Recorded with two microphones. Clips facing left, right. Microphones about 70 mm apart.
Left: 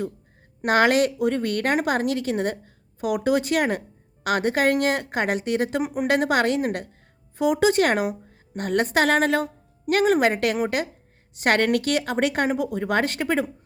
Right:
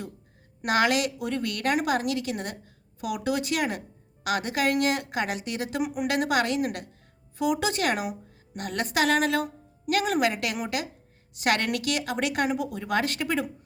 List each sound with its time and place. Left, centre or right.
0.6 s a woman's voice: left